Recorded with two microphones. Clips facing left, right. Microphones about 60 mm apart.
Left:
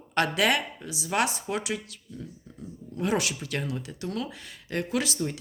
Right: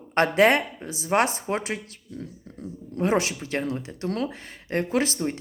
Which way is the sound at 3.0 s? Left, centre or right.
Right.